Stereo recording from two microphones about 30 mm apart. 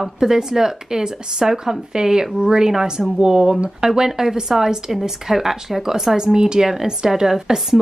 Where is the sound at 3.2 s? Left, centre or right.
Centre.